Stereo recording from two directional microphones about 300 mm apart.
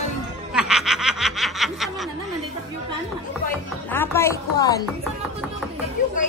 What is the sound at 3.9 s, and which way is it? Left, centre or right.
Speech, centre.